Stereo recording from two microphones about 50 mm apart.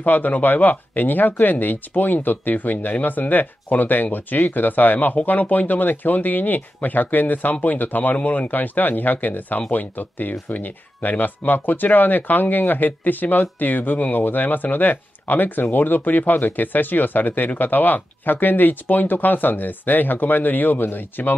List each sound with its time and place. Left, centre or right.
0.0 s speech: left